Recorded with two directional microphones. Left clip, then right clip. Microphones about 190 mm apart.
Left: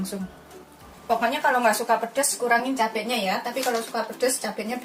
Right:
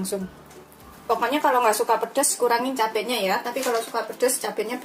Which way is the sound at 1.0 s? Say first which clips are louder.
Right 1 dB; 25° right (ahead or behind).